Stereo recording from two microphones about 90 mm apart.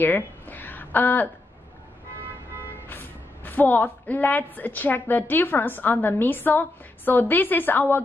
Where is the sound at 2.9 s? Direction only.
20° left (ahead or behind).